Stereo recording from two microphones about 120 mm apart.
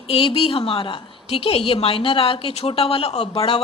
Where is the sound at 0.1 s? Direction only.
55° left (ahead or behind).